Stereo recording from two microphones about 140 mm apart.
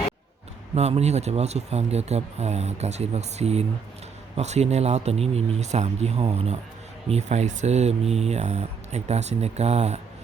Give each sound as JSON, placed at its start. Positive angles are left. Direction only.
{"t": 0.8, "sound": "speech", "side_deg": -50}